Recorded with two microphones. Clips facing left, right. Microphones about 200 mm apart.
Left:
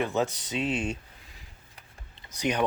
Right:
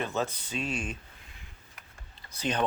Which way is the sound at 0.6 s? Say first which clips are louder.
Left 5 dB; 20° left (ahead or behind).